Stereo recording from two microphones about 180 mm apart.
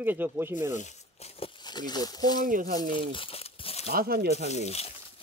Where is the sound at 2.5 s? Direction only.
50° right (ahead or behind).